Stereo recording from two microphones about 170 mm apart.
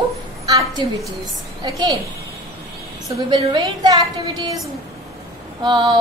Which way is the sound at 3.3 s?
25° right (ahead or behind).